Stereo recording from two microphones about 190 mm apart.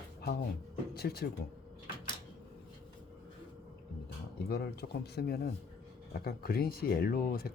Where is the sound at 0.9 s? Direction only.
55° left (ahead or behind).